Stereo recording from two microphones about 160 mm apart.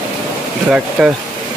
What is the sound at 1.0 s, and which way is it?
Speech, 5° right (ahead or behind).